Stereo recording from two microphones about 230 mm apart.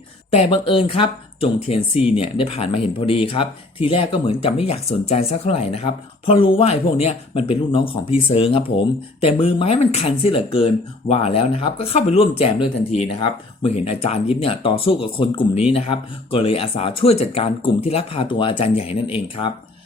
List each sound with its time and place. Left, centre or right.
0.3 s speech: left